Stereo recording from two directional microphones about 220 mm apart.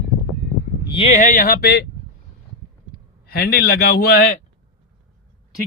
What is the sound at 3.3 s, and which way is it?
Speech, 45° left (ahead or behind).